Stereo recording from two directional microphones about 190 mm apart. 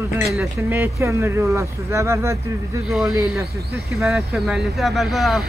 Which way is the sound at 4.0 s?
Centre (ahead or behind).